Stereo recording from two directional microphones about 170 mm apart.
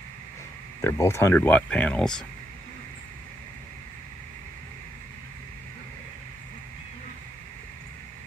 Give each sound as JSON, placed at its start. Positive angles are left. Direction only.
{"t": 0.7, "sound": "speech", "side_deg": 15}